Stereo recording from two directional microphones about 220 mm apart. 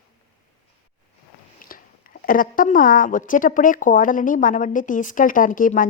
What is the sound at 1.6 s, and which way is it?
Speech, 40° left (ahead or behind).